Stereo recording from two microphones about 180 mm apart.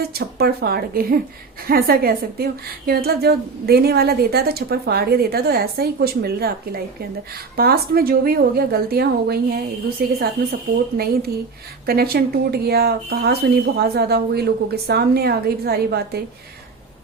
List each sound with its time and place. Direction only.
0.1 s a woman's voice: 60° right (ahead or behind)